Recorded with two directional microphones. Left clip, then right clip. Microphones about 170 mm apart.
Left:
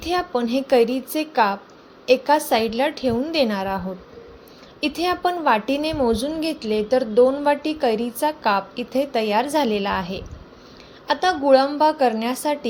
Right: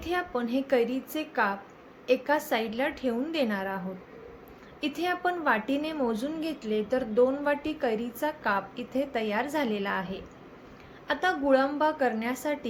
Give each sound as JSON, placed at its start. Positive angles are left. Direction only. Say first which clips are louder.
{"t": 0.0, "sound": "a woman's voice", "louder": "left 8 dB", "side_deg": 35}
{"t": 4.8, "sound": "a woman's voice", "louder": "left 8 dB", "side_deg": 30}